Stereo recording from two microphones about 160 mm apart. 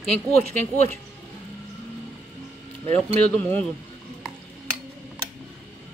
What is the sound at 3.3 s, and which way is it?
Speech, 10° left (ahead or behind).